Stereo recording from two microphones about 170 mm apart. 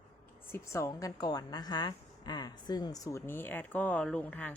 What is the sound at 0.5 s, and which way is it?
A woman's voice, 15° left (ahead or behind).